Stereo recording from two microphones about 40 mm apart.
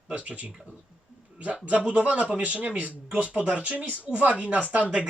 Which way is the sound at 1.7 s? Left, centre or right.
Right.